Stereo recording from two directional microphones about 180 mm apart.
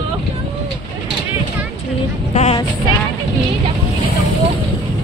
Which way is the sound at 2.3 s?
35° left (ahead or behind).